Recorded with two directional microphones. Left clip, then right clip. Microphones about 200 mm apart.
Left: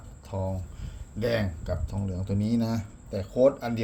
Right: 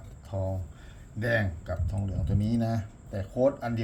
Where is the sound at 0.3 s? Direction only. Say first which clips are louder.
Left 1 dB; 35° left (ahead or behind).